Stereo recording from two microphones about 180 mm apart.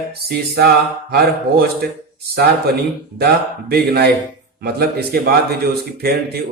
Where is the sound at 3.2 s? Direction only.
60° right (ahead or behind).